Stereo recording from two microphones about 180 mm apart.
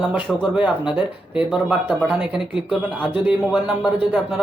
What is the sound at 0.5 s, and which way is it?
Speech, 5° right (ahead or behind).